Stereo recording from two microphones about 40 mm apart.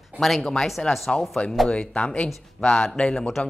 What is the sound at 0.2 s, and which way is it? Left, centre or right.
Speech, centre.